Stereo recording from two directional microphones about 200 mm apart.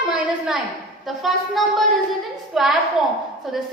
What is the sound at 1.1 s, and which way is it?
A woman's voice, centre (ahead or behind).